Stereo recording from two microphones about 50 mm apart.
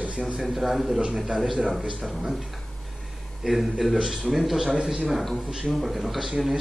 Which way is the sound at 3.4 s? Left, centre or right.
Centre.